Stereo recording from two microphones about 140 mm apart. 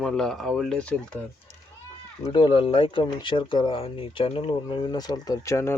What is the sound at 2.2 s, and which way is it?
Speech, 35° left (ahead or behind).